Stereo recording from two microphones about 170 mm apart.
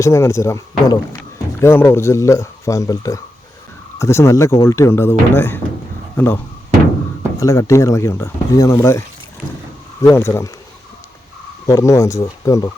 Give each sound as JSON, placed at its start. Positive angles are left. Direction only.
{"t": 0.0, "sound": "speech", "side_deg": 15}
{"t": 11.6, "sound": "speech", "side_deg": 20}